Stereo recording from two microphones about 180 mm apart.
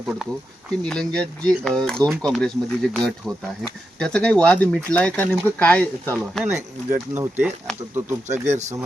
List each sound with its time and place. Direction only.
0.0 s speech: centre (ahead or behind)
6.9 s speech: 15° right (ahead or behind)
8.3 s speech: 40° right (ahead or behind)